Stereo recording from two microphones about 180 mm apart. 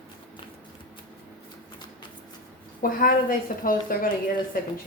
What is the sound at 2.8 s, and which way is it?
Speech, 50° left (ahead or behind).